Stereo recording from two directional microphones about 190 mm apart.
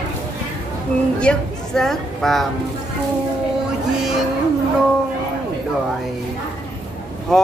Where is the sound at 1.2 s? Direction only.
5° left (ahead or behind).